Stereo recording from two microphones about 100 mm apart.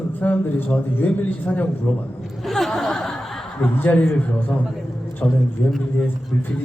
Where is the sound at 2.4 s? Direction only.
5° left (ahead or behind).